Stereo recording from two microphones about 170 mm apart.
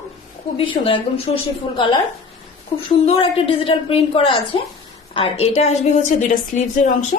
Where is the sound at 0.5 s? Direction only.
30° left (ahead or behind).